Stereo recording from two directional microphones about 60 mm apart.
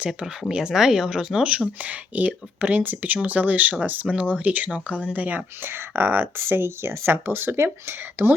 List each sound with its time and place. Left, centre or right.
0.1 s speech: centre; by 8.4 s right